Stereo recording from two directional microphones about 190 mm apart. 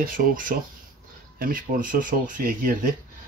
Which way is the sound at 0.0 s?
45° right (ahead or behind).